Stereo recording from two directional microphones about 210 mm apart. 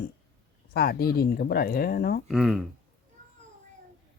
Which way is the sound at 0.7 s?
50° left (ahead or behind).